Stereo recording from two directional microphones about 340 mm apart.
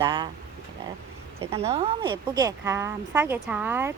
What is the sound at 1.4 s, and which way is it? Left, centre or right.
Speech, centre.